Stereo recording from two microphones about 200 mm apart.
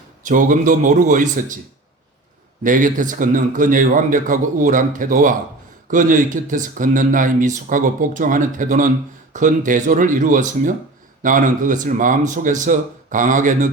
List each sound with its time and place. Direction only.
0.3 s speech: 40° right (ahead or behind)
2.6 s speech: 40° right (ahead or behind)